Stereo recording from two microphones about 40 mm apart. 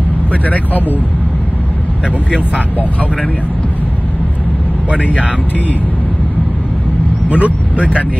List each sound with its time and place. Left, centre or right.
0.3 s speech: left
7.2 s speech: right